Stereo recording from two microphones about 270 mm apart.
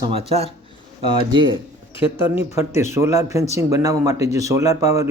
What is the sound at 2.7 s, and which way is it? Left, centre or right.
Speech, centre.